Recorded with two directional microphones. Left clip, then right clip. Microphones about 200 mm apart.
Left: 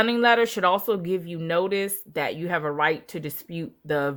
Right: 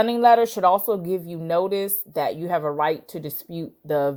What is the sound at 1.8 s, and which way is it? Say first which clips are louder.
Speech: right 2 dB; 20° left (ahead or behind).